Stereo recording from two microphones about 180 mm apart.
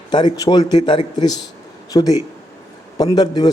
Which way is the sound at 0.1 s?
25° left (ahead or behind).